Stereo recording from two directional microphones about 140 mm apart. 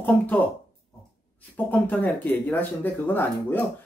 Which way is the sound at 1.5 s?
10° left (ahead or behind).